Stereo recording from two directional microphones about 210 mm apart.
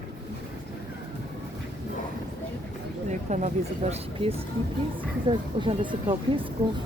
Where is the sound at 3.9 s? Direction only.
30° right (ahead or behind).